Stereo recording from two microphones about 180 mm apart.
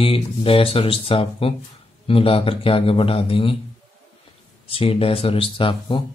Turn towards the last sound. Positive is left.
turn(degrees=30)  # may be behind; listen again after turning